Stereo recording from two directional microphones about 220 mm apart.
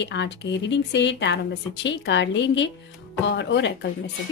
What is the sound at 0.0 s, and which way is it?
A woman's voice, 55° left (ahead or behind).